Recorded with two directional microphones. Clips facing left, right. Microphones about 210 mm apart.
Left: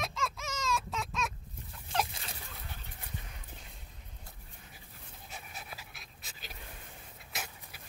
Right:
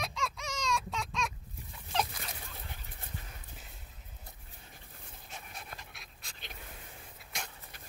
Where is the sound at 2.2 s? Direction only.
25° left (ahead or behind).